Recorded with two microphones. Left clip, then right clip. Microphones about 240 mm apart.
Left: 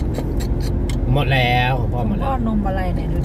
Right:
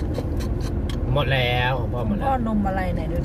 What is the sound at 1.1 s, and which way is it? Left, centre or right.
Speech, centre.